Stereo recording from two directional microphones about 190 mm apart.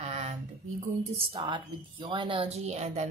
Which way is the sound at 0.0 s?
35° right (ahead or behind).